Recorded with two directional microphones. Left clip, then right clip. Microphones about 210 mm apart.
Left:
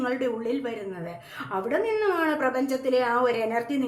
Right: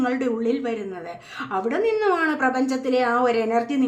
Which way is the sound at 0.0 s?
20° right (ahead or behind).